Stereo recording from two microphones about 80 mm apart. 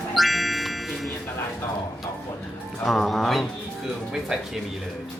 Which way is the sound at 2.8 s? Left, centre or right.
Centre.